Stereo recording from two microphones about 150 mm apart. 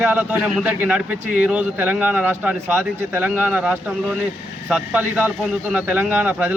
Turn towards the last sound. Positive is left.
turn(degrees=-10)  # may be behind; listen again after turning